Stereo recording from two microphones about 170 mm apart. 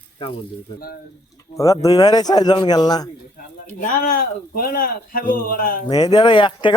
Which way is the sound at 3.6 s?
55° left (ahead or behind).